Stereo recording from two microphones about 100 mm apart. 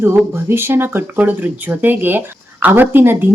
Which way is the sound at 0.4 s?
25° right (ahead or behind).